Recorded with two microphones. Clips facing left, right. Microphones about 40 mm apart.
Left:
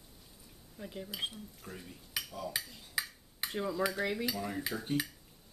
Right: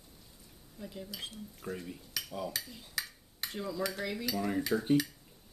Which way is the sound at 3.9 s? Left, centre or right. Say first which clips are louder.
Left 2 dB; centre.